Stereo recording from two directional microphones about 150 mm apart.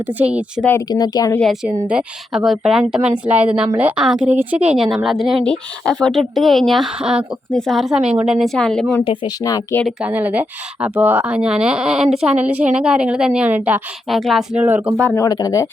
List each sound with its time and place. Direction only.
0.0 s speech: 10° right (ahead or behind)
0.6 s speech: 15° left (ahead or behind)
0.9 s speech: 25° left (ahead or behind)
1.9 s a woman's voice: 5° right (ahead or behind)
9.0 s speech: 25° left (ahead or behind)
9.8 s a woman's voice: 10° right (ahead or behind)
14.1 s a woman's voice: centre (ahead or behind)
15.1 s speech: 25° left (ahead or behind)